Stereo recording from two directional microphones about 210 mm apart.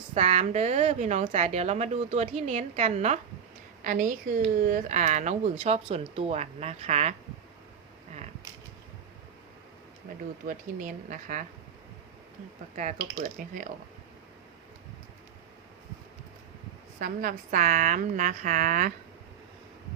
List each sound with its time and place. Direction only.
0.1 s a woman's voice: 30° right (ahead or behind)
10.4 s a woman's voice: 40° right (ahead or behind)
12.7 s a woman's voice: 35° right (ahead or behind)
17.0 s a woman's voice: 45° right (ahead or behind)